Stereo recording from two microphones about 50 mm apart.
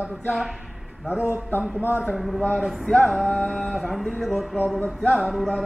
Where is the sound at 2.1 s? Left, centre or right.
Left.